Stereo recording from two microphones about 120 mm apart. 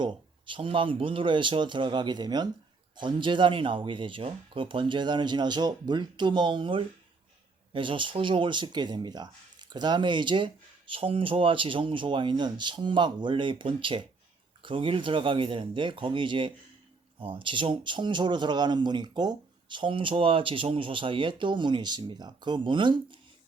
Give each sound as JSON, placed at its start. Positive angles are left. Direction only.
{"t": 0.0, "sound": "speech", "side_deg": -40}